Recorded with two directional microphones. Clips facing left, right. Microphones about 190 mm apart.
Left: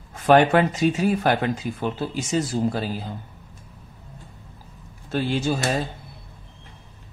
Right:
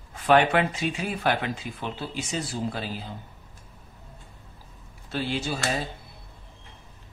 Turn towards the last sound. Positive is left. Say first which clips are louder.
# left 6 dB
turn(degrees=50)  # may be behind; listen again after turning